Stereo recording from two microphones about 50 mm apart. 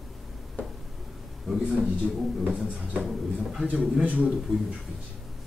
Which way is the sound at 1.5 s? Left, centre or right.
Centre.